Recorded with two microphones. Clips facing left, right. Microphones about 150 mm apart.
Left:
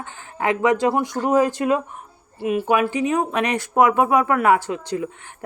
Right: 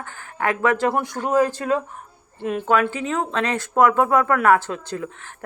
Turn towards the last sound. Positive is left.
turn(degrees=15)  # may be behind; listen again after turning